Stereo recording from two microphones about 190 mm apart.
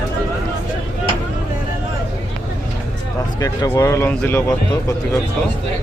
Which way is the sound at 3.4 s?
15° left (ahead or behind).